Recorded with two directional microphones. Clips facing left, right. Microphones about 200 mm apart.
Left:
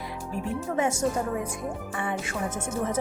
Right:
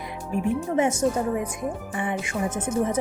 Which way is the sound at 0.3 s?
15° right (ahead or behind).